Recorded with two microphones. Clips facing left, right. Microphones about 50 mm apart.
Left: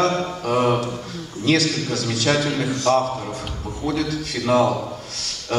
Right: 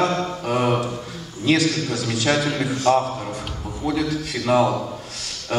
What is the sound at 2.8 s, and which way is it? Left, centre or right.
Speech, centre.